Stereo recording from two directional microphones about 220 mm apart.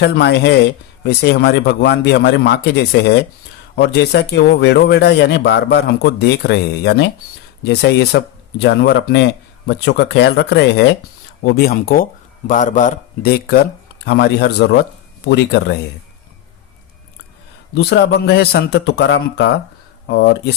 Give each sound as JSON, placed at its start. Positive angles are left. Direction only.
{"t": 0.0, "sound": "speech", "side_deg": 50}
{"t": 17.7, "sound": "speech", "side_deg": 50}